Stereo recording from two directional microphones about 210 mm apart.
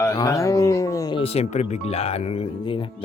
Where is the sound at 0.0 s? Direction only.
15° left (ahead or behind).